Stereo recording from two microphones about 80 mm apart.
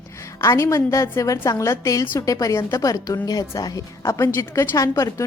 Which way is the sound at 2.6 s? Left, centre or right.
Left.